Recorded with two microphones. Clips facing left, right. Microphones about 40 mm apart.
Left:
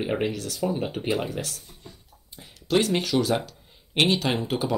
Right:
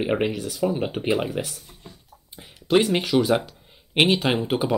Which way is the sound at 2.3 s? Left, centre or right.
Centre.